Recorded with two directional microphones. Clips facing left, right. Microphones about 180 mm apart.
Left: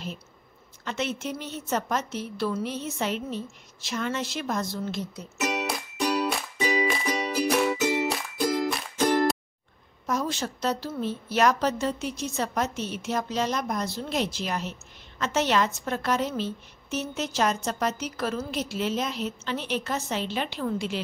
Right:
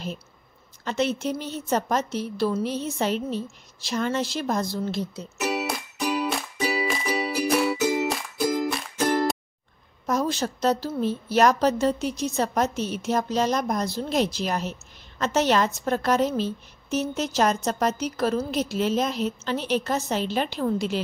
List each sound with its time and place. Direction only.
0.8 s a woman's voice: 35° right (ahead or behind)
5.4 s music: 5° right (ahead or behind)
10.0 s a woman's voice: 40° right (ahead or behind)